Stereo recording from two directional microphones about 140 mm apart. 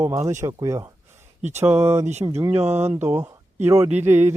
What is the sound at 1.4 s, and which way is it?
Speech, 55° right (ahead or behind).